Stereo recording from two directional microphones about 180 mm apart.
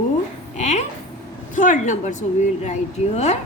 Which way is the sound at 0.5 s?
40° left (ahead or behind).